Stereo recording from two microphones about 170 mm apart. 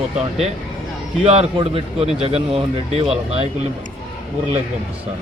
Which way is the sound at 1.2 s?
35° right (ahead or behind).